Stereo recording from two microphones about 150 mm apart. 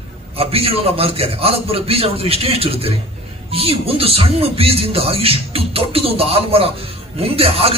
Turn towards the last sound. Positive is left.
turn(degrees=-40)  # may be behind; listen again after turning